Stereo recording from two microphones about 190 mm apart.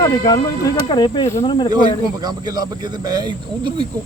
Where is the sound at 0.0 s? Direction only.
20° left (ahead or behind).